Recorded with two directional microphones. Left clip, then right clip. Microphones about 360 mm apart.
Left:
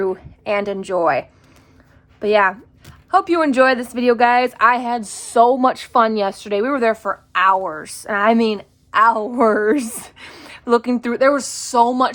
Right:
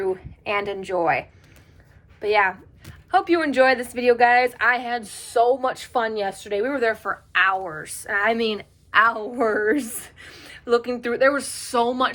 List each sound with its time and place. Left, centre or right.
0.0 s a woman's voice: centre